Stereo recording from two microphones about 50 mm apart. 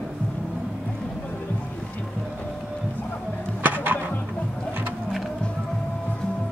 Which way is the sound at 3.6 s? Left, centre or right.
Right.